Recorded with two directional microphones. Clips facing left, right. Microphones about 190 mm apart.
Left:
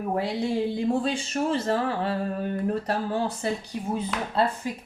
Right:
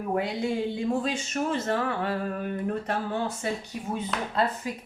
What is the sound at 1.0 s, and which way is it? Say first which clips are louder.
A woman's voice: left 2 dB; 35° left (ahead or behind).